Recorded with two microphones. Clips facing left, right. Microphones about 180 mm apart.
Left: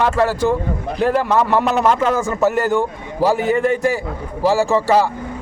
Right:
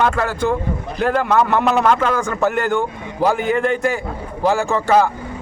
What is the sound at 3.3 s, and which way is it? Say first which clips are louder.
Speech: left 2 dB; 35° left (ahead or behind).